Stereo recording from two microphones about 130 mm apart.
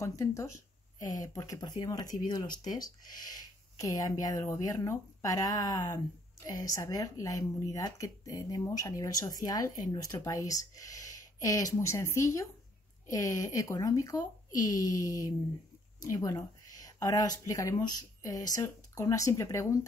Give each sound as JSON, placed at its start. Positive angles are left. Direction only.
{"t": 0.0, "sound": "speech", "side_deg": 25}